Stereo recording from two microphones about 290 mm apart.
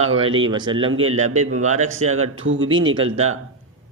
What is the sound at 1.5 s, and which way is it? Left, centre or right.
Speech, right.